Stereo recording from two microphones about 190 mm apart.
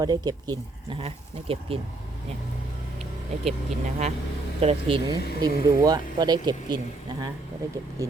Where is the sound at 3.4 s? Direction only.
35° right (ahead or behind).